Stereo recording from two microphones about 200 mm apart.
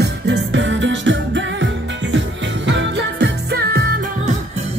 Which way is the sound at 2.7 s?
55° right (ahead or behind).